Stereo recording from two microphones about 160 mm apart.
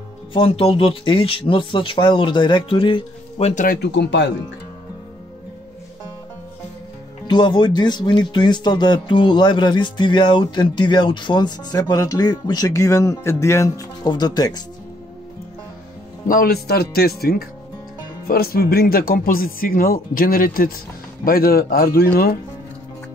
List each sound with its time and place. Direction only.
0.3 s speech: 35° left (ahead or behind)
3.6 s speech: 80° left
7.2 s speech: 30° left (ahead or behind)
16.3 s speech: 65° left (ahead or behind)